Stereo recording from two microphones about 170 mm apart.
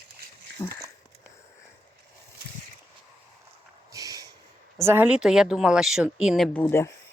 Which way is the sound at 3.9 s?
20° right (ahead or behind).